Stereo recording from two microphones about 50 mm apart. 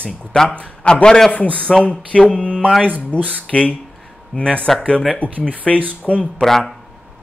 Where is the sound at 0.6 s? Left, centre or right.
Left.